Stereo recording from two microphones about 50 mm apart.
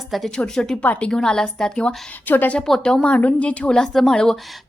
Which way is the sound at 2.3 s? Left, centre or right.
Left.